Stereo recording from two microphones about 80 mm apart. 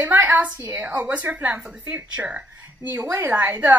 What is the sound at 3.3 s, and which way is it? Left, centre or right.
Speech, right.